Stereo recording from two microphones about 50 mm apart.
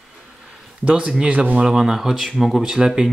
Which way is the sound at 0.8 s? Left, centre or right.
Right.